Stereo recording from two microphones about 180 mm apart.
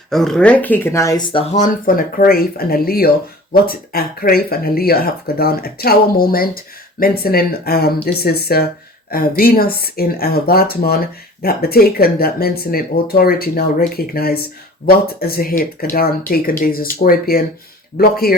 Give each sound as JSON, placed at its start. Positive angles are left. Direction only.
{"t": 0.1, "sound": "speech", "side_deg": 0}
{"t": 1.5, "sound": "speech", "side_deg": 45}